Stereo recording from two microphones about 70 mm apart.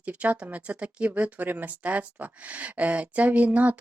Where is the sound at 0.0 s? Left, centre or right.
Right.